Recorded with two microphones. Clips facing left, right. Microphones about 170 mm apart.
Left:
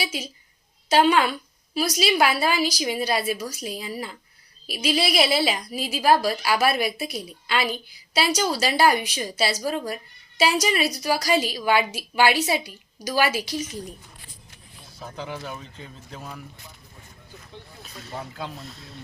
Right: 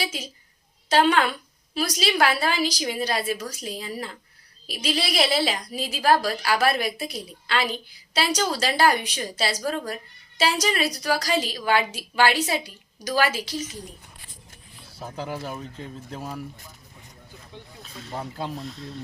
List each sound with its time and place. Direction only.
0.9 s a woman's voice: 10° left (ahead or behind)
14.9 s speech: 10° right (ahead or behind)
16.1 s speech: 35° right (ahead or behind)